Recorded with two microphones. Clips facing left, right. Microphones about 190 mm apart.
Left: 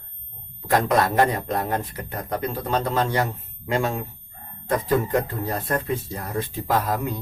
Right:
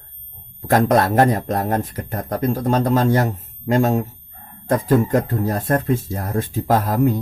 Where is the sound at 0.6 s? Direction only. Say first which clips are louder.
Right 4 dB; 45° right (ahead or behind).